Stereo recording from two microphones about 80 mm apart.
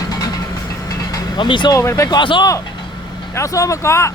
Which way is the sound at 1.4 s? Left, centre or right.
Left.